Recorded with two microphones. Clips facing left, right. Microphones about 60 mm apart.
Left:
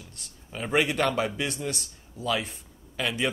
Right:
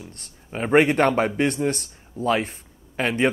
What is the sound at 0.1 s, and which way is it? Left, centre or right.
Speech, right.